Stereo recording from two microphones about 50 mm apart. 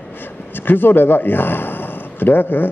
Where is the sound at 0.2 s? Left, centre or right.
Left.